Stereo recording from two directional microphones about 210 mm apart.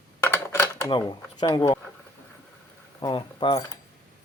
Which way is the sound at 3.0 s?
20° left (ahead or behind).